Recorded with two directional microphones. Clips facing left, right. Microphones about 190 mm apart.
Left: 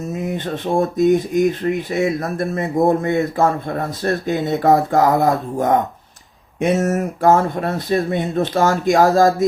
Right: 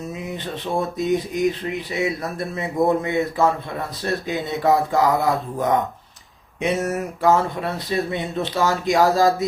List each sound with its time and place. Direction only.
0.1 s speech: 50° left (ahead or behind)